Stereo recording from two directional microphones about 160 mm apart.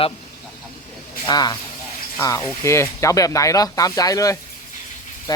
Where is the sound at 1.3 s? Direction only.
25° left (ahead or behind).